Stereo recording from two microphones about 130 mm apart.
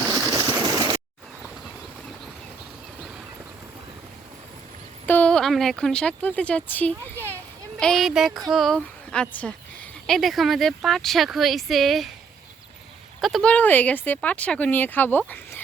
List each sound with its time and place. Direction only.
0.1 s a sound: 30° right (ahead or behind)
5.0 s speech: 10° left (ahead or behind)
13.2 s speech: centre (ahead or behind)
13.5 s speech: 10° left (ahead or behind)